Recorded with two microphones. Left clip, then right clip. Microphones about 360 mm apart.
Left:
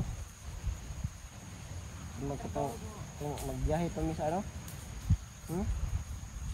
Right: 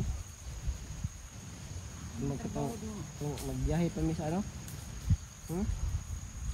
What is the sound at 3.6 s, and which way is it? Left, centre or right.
Speech, left.